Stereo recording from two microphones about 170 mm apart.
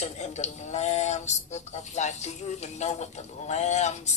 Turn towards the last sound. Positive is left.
turn(degrees=40)  # may be behind; listen again after turning